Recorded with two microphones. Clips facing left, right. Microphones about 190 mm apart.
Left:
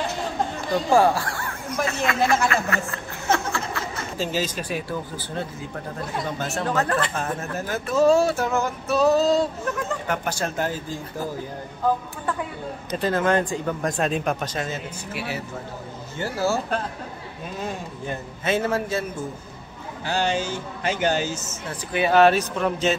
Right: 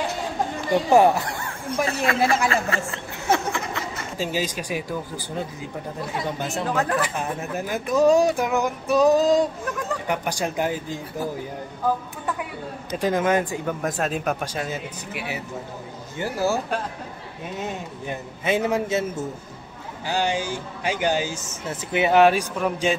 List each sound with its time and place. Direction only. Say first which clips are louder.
0.8 s speech: right 2 dB; 20° right (ahead or behind)
1.9 s a man's voice: even; 35° right (ahead or behind)
3.3 s a sound: right 1 dB; 15° right (ahead or behind)
6.3 s speech: left 1 dB; 15° right (ahead or behind)
12.9 s a man's voice: even; 10° right (ahead or behind)